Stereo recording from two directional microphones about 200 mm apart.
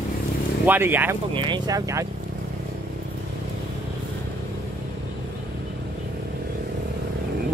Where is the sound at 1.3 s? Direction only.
25° right (ahead or behind).